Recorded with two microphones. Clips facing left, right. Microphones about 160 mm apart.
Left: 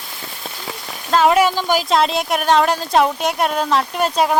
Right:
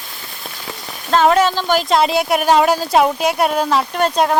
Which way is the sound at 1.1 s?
5° left (ahead or behind).